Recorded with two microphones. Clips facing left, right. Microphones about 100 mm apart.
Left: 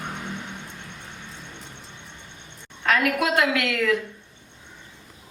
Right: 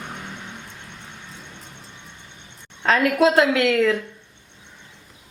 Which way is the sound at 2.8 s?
30° right (ahead or behind).